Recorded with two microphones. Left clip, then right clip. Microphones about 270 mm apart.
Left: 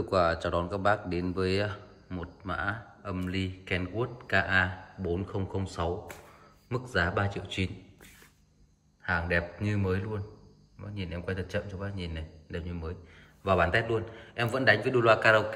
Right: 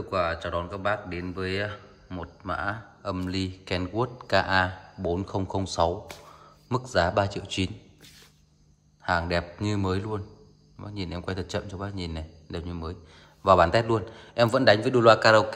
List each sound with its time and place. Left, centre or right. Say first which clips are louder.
0.1 s speech: even; centre
9.0 s speech: right 3 dB; centre